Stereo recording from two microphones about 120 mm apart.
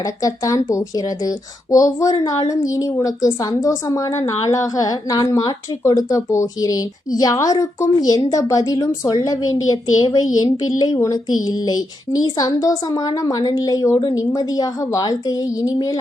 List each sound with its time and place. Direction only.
0.0 s a woman's voice: 30° left (ahead or behind)